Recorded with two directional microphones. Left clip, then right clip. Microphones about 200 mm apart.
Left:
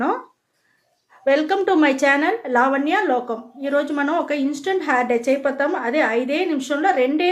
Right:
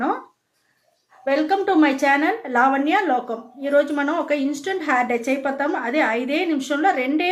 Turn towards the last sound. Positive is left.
turn(degrees=20)  # may be behind; listen again after turning